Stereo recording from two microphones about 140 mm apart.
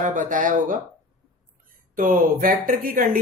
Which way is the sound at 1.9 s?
75° right (ahead or behind).